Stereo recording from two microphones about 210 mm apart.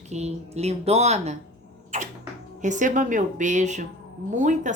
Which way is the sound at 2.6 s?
35° right (ahead or behind).